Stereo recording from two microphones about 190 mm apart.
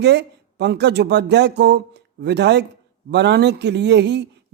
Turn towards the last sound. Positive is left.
turn(degrees=-65)  # may be behind; listen again after turning